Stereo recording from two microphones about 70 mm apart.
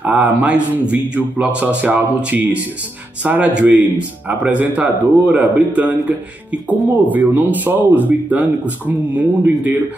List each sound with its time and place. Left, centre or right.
0.0 s speech: right